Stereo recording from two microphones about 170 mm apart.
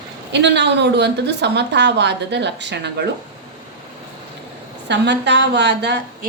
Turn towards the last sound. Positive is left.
turn(degrees=-85)